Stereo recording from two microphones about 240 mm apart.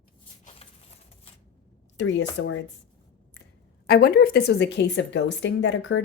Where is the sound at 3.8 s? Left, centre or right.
Left.